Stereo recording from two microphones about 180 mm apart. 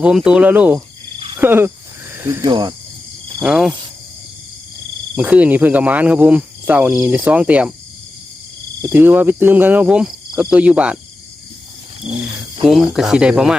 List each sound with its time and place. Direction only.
0.0 s speech: 5° right (ahead or behind); by 2.7 s 25° right (ahead or behind)
3.4 s speech: 5° right (ahead or behind)
5.1 s speech: 10° right (ahead or behind)
8.8 s speech: 10° right (ahead or behind)
12.6 s speech: centre (ahead or behind)